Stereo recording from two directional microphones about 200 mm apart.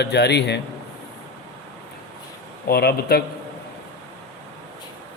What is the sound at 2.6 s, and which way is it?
Speech, 50° left (ahead or behind).